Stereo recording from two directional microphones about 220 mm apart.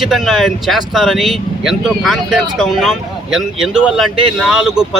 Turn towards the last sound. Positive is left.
turn(degrees=-5)  # may be behind; listen again after turning